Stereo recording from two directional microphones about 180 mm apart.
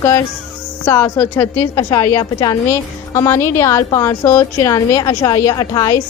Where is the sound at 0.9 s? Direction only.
15° left (ahead or behind).